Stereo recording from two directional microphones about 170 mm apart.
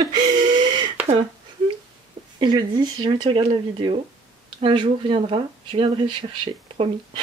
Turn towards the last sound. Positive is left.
turn(degrees=-30)  # may be behind; listen again after turning